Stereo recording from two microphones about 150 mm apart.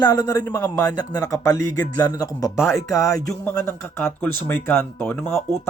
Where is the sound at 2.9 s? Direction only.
20° left (ahead or behind).